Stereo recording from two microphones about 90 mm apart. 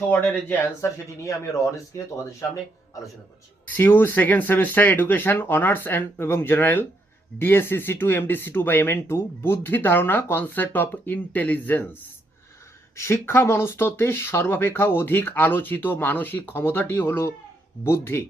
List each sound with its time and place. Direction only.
0.1 s speech: 20° left (ahead or behind)
1.7 s speech: 35° left (ahead or behind)
3.8 s speech: 25° left (ahead or behind)
13.0 s speech: 30° left (ahead or behind)